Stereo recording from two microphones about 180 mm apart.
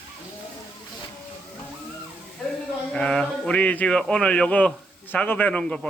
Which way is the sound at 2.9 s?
5° left (ahead or behind).